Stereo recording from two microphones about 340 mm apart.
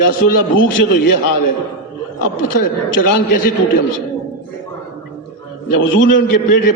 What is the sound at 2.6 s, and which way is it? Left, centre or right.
Speech, left.